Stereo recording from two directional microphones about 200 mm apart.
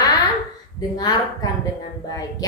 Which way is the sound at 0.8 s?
20° left (ahead or behind).